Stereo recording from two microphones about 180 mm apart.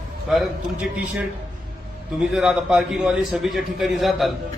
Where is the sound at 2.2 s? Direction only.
Centre (ahead or behind).